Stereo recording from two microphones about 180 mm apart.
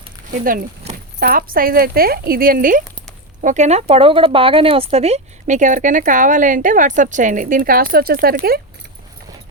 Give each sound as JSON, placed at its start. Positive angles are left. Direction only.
{"t": 0.3, "sound": "speech", "side_deg": -50}